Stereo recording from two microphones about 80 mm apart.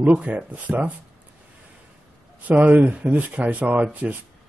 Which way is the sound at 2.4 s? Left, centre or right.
Centre.